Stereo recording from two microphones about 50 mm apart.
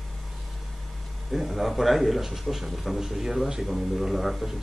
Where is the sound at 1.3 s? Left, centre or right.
Centre.